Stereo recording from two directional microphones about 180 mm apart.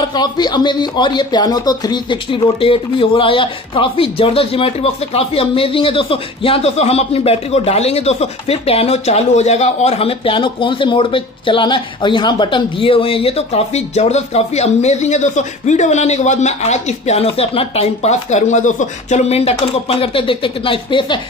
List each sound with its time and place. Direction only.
0.1 s speech: 25° left (ahead or behind)